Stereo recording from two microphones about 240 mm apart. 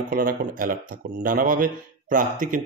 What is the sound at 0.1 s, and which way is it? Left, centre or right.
A man's voice, right.